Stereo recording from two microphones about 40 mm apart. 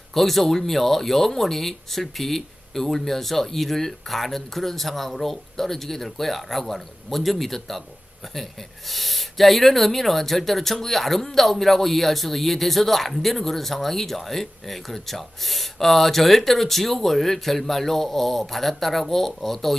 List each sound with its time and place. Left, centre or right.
0.1 s speech: centre
8.9 s speech: centre